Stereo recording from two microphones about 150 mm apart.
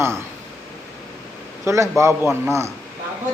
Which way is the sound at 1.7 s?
20° right (ahead or behind).